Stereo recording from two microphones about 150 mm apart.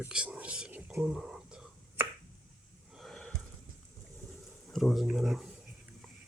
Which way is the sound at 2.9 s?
Centre (ahead or behind).